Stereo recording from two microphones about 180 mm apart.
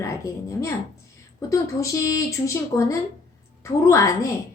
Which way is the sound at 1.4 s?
15° left (ahead or behind).